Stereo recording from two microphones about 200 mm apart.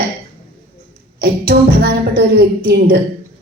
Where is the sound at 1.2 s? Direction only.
50° right (ahead or behind).